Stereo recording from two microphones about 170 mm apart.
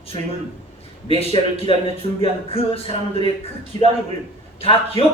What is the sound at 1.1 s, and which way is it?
A man's voice, 35° left (ahead or behind).